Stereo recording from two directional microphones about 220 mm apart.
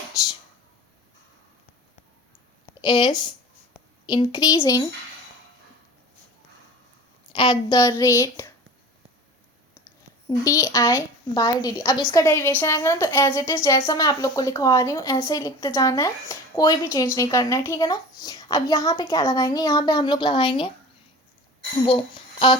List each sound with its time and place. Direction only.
2.6 s a woman's voice: 20° left (ahead or behind)
7.3 s a woman's voice: 20° left (ahead or behind)
9.8 s a woman's voice: 15° left (ahead or behind)
21.8 s a woman's voice: 25° left (ahead or behind)